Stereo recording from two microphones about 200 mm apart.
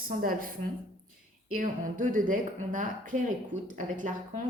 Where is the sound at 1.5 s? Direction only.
40° right (ahead or behind).